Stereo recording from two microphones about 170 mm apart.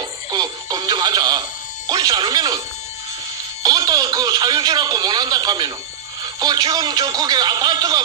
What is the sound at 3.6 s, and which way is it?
A man's voice, 25° right (ahead or behind).